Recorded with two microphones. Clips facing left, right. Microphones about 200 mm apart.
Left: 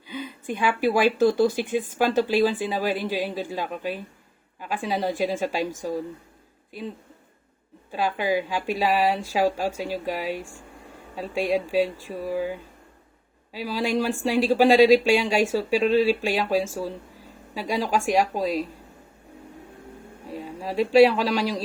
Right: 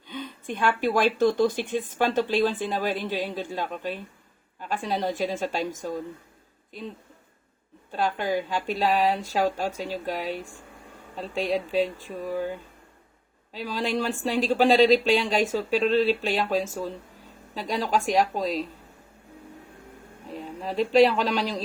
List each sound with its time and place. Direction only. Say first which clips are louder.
0.0 s speech: left 2 dB; 5° left (ahead or behind)
7.9 s speech: left 2 dB; 10° left (ahead or behind)
20.3 s speech: left 2 dB; 10° left (ahead or behind)